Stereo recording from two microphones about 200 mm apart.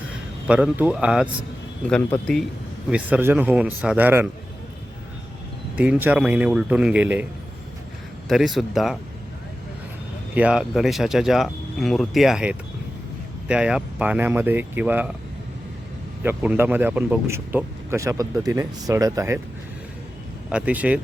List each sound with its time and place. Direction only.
0.1 s a man's voice: 5° right (ahead or behind)
2.9 s speech: 10° right (ahead or behind)
5.7 s speech: 5° right (ahead or behind)
8.3 s speech: centre (ahead or behind)
10.3 s speech: 5° right (ahead or behind)
16.2 s speech: 10° right (ahead or behind)
20.5 s speech: 5° right (ahead or behind)